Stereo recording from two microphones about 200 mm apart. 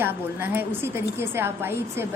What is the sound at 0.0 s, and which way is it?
A woman's voice, 10° right (ahead or behind).